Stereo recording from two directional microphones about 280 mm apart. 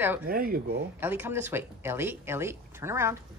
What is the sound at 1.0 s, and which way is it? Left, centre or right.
Speech, centre.